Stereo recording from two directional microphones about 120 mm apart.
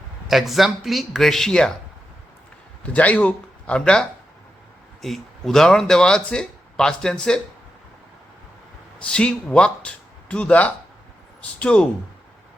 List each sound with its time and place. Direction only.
0.3 s speech: centre (ahead or behind)
2.8 s speech: 10° left (ahead or behind)
5.0 s speech: centre (ahead or behind)
9.0 s speech: 10° left (ahead or behind)